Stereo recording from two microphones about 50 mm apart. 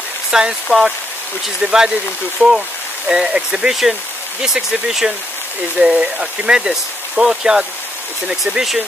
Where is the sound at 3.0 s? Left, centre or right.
Centre.